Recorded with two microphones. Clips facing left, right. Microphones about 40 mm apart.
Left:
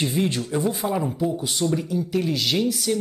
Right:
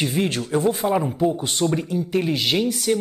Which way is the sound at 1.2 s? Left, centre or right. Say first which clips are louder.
Right 3 dB; right.